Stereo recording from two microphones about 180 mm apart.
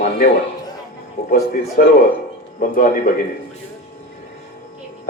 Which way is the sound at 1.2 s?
55° left (ahead or behind).